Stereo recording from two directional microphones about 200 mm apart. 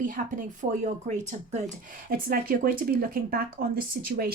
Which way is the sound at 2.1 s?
45° right (ahead or behind).